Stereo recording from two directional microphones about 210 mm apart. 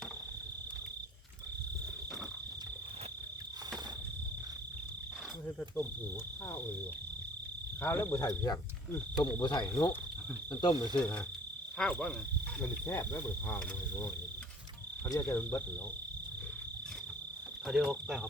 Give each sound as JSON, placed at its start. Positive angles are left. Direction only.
{"t": 7.8, "sound": "speech", "side_deg": 10}
{"t": 9.4, "sound": "cricket", "side_deg": 20}
{"t": 10.9, "sound": "speech", "side_deg": 10}
{"t": 15.1, "sound": "speech", "side_deg": 15}
{"t": 17.7, "sound": "speech", "side_deg": 0}